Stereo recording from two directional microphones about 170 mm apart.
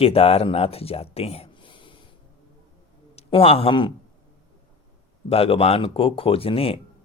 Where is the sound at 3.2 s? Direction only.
35° left (ahead or behind).